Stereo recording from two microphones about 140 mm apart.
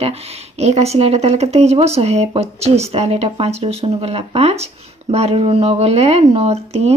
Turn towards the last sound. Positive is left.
turn(degrees=-50)  # may be behind; listen again after turning